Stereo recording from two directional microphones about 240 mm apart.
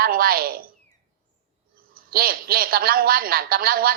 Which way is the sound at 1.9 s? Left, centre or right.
Right.